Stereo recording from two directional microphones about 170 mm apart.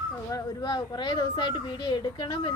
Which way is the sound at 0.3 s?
20° left (ahead or behind).